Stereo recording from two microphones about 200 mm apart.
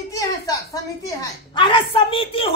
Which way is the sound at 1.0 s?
20° left (ahead or behind).